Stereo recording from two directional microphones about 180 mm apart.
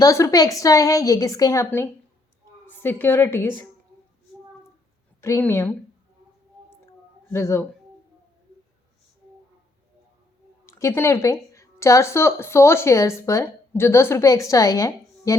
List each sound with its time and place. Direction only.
0.0 s a woman's voice: 20° left (ahead or behind)
5.2 s speech: 15° left (ahead or behind)
7.3 s speech: 15° left (ahead or behind)
10.7 s a woman's voice: 15° left (ahead or behind)